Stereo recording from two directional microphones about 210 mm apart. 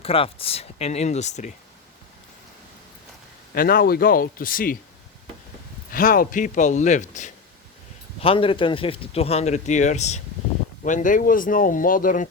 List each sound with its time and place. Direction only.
0.0 s speech: 25° left (ahead or behind)
3.5 s speech: 45° left (ahead or behind)
5.9 s speech: 40° left (ahead or behind)
8.2 s speech: 25° left (ahead or behind)